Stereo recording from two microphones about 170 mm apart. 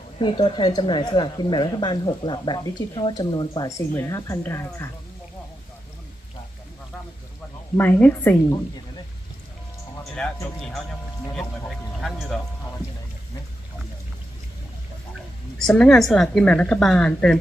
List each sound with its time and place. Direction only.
0.2 s speech: 30° left (ahead or behind)
7.8 s a woman's voice: 10° left (ahead or behind)
10.2 s a woman's voice: 5° left (ahead or behind)
11.9 s speech: centre (ahead or behind)
15.7 s a woman's voice: 5° left (ahead or behind)